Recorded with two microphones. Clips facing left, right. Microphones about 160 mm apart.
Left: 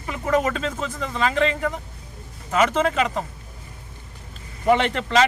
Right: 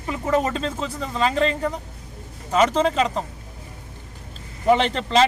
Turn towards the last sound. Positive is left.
turn(degrees=-30)  # may be behind; listen again after turning